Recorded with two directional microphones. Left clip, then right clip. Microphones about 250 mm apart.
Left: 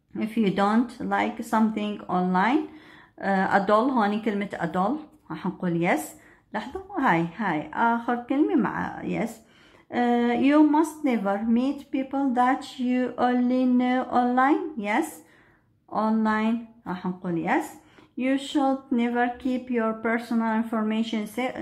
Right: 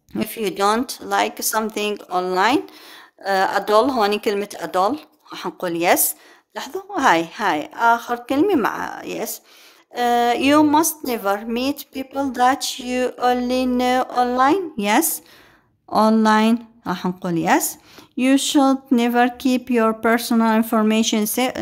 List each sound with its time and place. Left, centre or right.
0.1 s a woman's voice: right